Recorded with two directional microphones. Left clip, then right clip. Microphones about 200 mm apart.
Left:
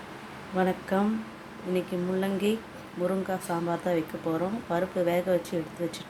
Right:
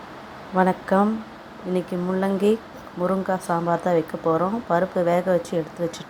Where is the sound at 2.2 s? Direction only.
15° right (ahead or behind).